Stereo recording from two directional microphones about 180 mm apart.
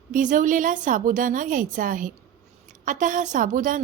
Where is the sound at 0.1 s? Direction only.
45° right (ahead or behind).